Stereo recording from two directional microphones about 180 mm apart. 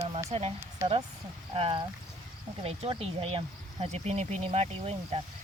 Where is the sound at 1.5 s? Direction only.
30° right (ahead or behind).